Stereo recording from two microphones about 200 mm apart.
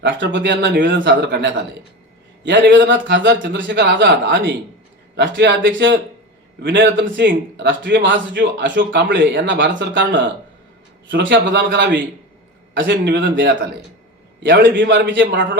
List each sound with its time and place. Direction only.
0.0 s speech: 65° right (ahead or behind)
2.7 s speech: 60° right (ahead or behind)
14.8 s speech: 65° right (ahead or behind)